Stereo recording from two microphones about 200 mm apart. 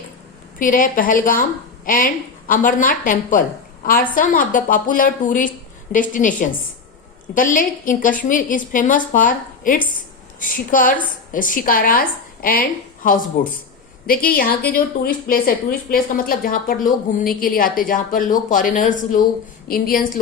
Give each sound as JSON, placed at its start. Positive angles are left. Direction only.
{"t": 0.6, "sound": "a woman's voice", "side_deg": 40}